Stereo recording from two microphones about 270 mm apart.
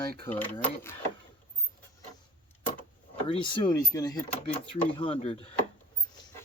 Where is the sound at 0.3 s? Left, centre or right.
Centre.